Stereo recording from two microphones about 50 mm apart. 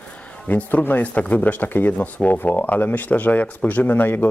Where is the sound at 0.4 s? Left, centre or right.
Left.